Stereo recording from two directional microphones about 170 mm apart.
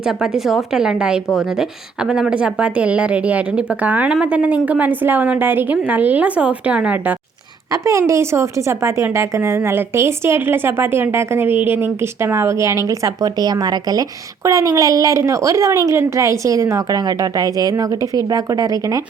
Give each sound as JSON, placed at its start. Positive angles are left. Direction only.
{"t": 0.2, "sound": "a woman's voice", "side_deg": 0}